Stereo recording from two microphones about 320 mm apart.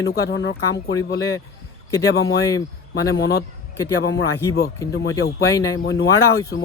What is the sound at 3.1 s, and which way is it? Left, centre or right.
Speech, left.